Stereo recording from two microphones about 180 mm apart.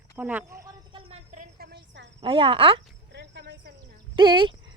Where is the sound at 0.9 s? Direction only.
30° right (ahead or behind).